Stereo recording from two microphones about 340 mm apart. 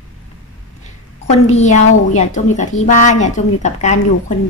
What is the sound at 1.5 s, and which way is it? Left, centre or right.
Speech, centre.